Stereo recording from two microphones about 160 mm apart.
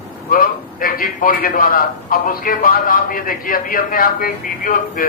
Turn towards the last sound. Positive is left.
turn(degrees=60)  # may be behind; listen again after turning